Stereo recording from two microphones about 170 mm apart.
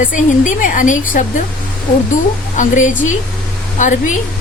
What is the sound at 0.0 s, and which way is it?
Speech, 50° left (ahead or behind).